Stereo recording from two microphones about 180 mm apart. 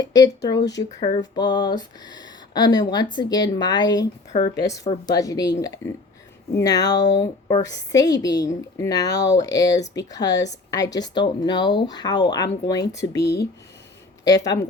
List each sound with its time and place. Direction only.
0.0 s speech: 20° left (ahead or behind)
0.6 s speech: 75° left (ahead or behind)
1.4 s speech: 25° left (ahead or behind)
6.6 s speech: 20° left (ahead or behind)
13.2 s speech: 65° left (ahead or behind)
14.3 s speech: 20° left (ahead or behind)